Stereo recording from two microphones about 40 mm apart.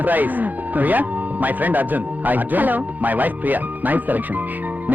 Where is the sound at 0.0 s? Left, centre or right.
Right.